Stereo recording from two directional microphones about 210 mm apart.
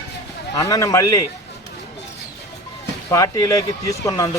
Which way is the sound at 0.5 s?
15° left (ahead or behind).